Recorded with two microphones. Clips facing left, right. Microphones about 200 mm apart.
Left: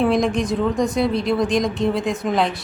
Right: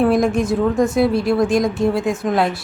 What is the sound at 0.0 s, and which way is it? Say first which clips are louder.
A woman's voice: right 3 dB; centre (ahead or behind).